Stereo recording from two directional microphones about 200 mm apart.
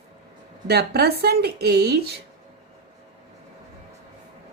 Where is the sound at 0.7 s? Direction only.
55° right (ahead or behind).